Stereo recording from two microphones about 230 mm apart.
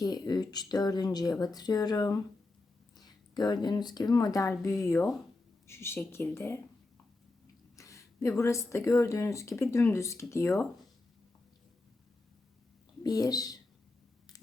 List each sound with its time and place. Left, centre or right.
0.0 s speech: centre
7.8 s speech: centre
13.0 s speech: centre
14.3 s a sound: centre